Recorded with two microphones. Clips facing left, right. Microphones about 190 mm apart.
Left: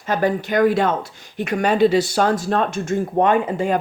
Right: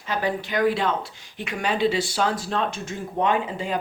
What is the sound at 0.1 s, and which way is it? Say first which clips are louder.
Speech: left 6 dB; 45° left (ahead or behind).